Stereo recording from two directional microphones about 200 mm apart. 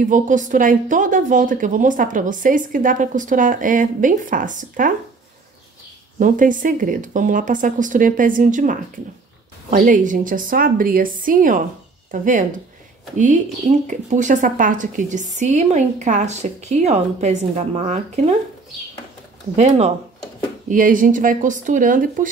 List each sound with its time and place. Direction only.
0.0 s speech: 40° right (ahead or behind)
6.1 s a woman's voice: 40° right (ahead or behind)
19.5 s speech: 35° right (ahead or behind)